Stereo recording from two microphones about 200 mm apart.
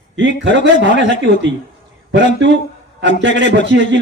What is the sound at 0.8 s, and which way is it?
Speech, 65° right (ahead or behind).